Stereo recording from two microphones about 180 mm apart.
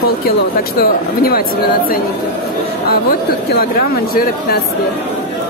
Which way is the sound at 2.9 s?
55° left (ahead or behind).